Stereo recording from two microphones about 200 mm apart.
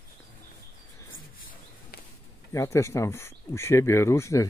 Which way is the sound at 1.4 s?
45° left (ahead or behind).